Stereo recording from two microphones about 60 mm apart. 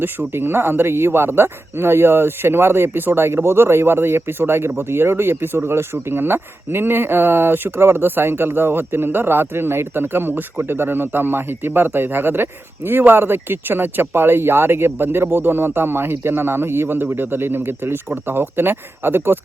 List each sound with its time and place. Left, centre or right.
0.0 s speech: right